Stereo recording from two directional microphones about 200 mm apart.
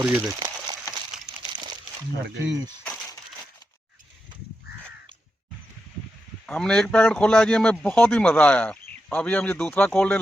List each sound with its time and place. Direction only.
0.0 s speech: 5° right (ahead or behind)
0.3 s a sound: 20° right (ahead or behind)
6.4 s speech: 5° left (ahead or behind)